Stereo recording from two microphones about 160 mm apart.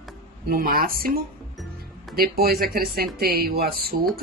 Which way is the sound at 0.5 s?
65° right (ahead or behind).